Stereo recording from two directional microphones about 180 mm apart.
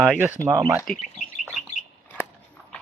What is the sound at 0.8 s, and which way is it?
Duck, 5° left (ahead or behind).